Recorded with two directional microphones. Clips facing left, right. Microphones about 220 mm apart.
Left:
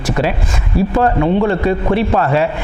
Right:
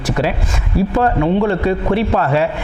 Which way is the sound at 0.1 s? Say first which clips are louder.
Left 1 dB; 20° left (ahead or behind).